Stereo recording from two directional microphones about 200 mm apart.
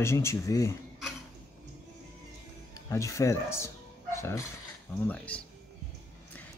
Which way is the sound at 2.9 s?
15° left (ahead or behind).